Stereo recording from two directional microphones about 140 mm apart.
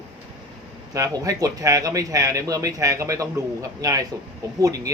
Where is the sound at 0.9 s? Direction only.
25° right (ahead or behind).